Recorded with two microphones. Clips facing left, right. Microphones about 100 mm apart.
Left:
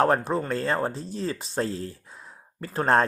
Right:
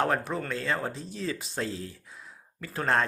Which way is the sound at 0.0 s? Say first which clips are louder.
Left 5 dB; 35° left (ahead or behind).